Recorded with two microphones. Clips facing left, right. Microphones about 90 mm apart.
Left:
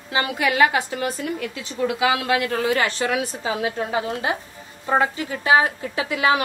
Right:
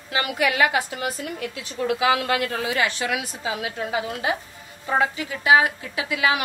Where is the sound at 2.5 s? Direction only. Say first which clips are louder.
Left 3 dB; 40° left (ahead or behind).